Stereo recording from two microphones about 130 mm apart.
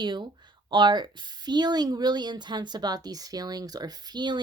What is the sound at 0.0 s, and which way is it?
A woman's voice, 35° right (ahead or behind).